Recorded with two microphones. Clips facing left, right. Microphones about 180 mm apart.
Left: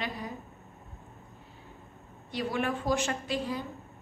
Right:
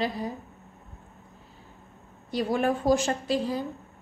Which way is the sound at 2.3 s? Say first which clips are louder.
Right 6 dB; 40° right (ahead or behind).